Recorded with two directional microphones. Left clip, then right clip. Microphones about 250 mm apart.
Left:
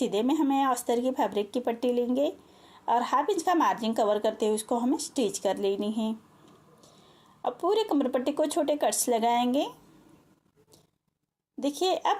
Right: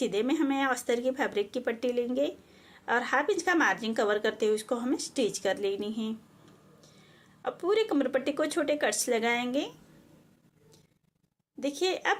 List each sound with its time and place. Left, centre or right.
0.0 s speech: centre
7.4 s speech: centre
11.6 s speech: centre